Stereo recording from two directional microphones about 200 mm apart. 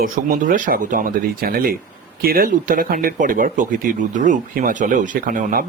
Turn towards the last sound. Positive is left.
turn(degrees=-40)  # may be behind; listen again after turning